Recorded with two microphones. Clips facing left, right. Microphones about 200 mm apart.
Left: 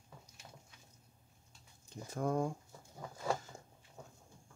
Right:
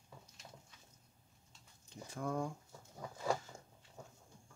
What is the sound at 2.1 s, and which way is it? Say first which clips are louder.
Speech: left 5 dB; 45° left (ahead or behind).